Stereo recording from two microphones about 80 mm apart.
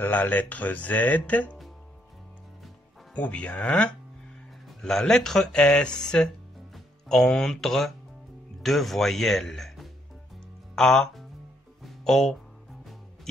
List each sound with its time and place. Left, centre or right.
0.0 s speech: left
3.2 s speech: centre
11.8 s music: centre